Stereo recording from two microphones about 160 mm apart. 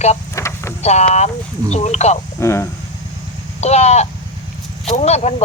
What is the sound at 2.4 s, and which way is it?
Speech, 15° left (ahead or behind).